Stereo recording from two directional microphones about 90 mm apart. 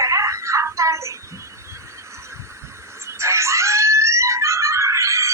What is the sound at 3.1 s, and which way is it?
Music, 30° right (ahead or behind).